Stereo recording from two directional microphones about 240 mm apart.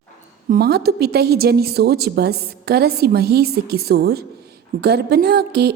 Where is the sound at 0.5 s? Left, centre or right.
Right.